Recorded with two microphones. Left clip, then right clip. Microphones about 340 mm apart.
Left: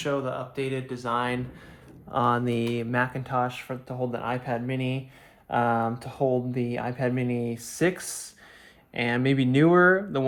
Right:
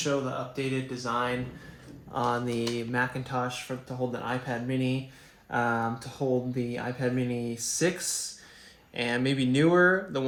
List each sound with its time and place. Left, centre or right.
0.0 s speech: left